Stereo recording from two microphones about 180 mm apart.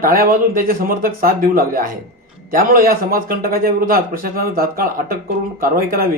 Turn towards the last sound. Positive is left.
turn(degrees=-55)  # may be behind; listen again after turning